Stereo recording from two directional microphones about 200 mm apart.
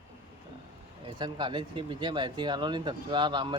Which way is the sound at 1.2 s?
25° right (ahead or behind).